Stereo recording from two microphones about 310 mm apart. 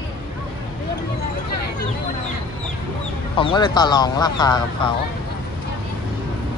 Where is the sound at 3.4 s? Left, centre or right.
Centre.